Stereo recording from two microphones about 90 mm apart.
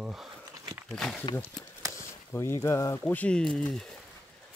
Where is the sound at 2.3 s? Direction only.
30° left (ahead or behind).